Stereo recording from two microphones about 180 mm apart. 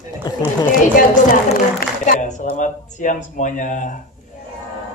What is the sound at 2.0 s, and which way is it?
A man's voice, 45° left (ahead or behind).